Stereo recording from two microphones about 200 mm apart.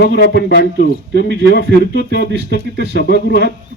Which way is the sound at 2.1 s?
50° left (ahead or behind).